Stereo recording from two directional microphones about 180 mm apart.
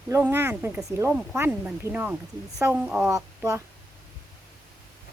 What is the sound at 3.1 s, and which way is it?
Speech, 15° right (ahead or behind).